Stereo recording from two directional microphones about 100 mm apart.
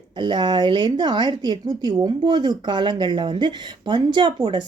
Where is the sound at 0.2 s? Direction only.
50° right (ahead or behind).